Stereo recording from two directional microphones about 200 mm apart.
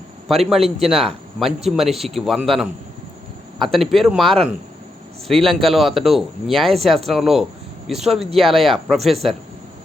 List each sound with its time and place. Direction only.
0.3 s speech: centre (ahead or behind)